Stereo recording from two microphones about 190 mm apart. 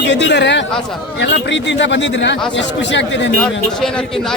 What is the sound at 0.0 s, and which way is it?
Speech, 70° left (ahead or behind).